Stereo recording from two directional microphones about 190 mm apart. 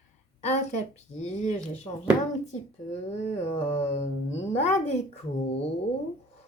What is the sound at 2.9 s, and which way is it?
Speech, 35° left (ahead or behind).